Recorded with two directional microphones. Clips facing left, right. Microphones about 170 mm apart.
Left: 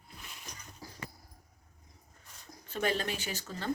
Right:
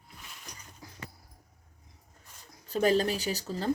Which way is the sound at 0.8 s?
35° left (ahead or behind).